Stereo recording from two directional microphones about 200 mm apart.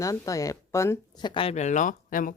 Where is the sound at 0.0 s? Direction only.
15° left (ahead or behind).